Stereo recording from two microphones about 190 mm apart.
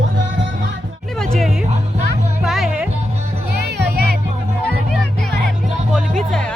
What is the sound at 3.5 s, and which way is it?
Music, 60° right (ahead or behind).